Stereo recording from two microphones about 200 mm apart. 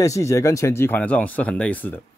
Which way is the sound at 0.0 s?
15° left (ahead or behind).